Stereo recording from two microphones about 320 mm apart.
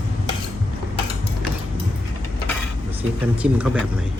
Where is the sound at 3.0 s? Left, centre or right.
Centre.